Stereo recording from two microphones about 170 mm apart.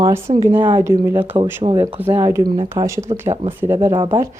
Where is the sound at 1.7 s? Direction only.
10° right (ahead or behind).